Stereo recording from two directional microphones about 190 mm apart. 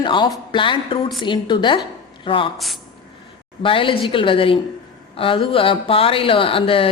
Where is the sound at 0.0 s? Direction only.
25° left (ahead or behind).